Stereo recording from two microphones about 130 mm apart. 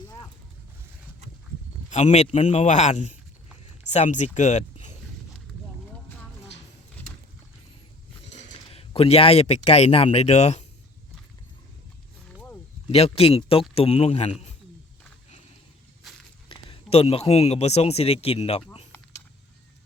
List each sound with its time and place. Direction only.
1.9 s a man's voice: 60° left (ahead or behind)
8.3 s speech: 55° left (ahead or behind)
12.9 s speech: 50° left (ahead or behind)
16.1 s walk: centre (ahead or behind)
16.5 s speech: 45° left (ahead or behind)